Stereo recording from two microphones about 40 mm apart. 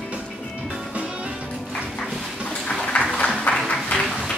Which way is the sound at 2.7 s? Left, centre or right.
Centre.